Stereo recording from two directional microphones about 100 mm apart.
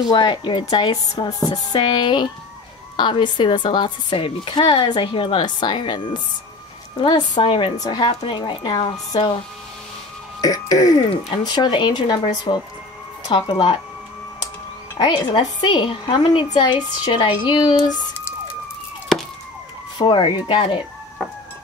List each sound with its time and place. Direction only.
0.1 s speech: 55° left (ahead or behind)
7.7 s speech: 40° left (ahead or behind)
8.1 s a woman's voice: 75° left (ahead or behind)
8.4 s speech: 45° left (ahead or behind)
10.4 s speech: 35° left (ahead or behind)
15.0 s speech: 50° left (ahead or behind)
20.0 s speech: 55° left (ahead or behind)